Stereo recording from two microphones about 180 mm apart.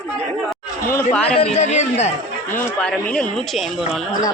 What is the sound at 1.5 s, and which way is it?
Speech, 40° left (ahead or behind).